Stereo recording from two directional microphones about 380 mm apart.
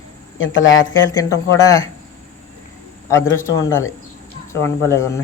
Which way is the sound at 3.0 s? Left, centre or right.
Centre.